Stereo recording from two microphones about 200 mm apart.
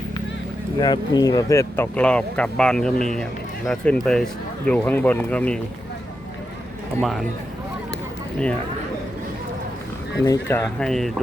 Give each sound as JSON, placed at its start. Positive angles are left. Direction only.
{"t": 0.8, "sound": "speech", "side_deg": 20}
{"t": 7.0, "sound": "speech", "side_deg": 0}
{"t": 10.2, "sound": "speech", "side_deg": 10}